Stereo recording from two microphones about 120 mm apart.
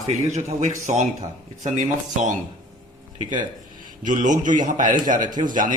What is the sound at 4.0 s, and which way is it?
A man's voice, 90° right.